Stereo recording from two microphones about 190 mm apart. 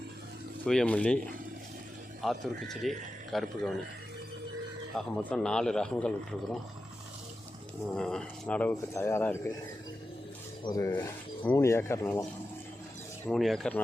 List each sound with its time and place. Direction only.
0.6 s speech: 5° left (ahead or behind)
2.2 s speech: centre (ahead or behind)
4.9 s speech: 5° left (ahead or behind)
7.9 s speech: 5° left (ahead or behind)
10.6 s speech: 20° left (ahead or behind)
13.2 s speech: centre (ahead or behind)